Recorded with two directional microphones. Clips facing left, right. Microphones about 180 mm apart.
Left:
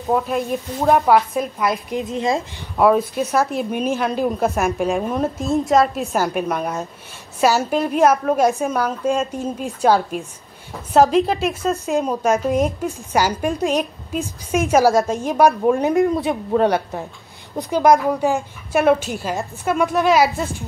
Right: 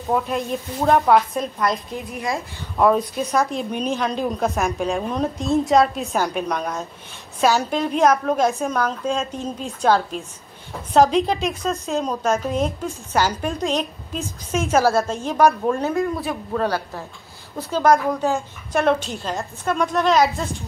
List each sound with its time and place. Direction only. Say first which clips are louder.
0.1 s a woman's voice: left 2 dB; centre (ahead or behind)
2.0 s a woman's voice: left 6 dB; 20° left (ahead or behind)
2.8 s a woman's voice: left 2 dB; 5° left (ahead or behind)